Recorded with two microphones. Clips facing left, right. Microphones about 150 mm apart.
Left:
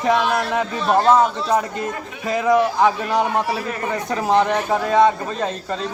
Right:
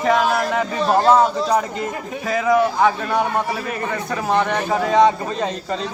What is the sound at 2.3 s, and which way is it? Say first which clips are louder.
Speech: even; 5° right (ahead or behind).